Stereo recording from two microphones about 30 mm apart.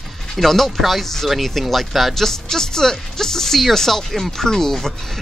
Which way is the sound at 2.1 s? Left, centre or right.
Centre.